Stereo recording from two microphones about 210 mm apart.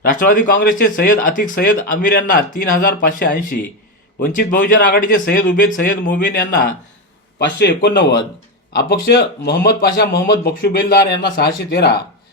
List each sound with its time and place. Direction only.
0.0 s speech: 40° left (ahead or behind)